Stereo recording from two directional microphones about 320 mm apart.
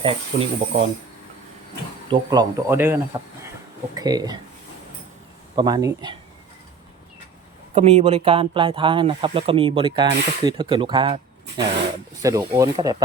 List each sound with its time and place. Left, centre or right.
0.0 s speech: centre
2.0 s speech: centre
5.5 s speech: centre
7.7 s speech: centre